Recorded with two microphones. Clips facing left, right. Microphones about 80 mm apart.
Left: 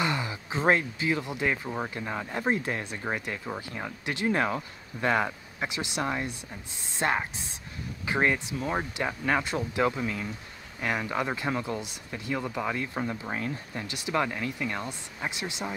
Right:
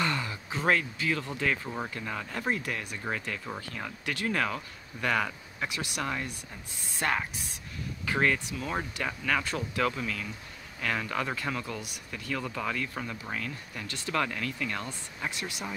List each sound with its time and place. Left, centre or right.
0.0 s speech: centre
3.4 s speech: centre
3.7 s speech: left
13.8 s speech: centre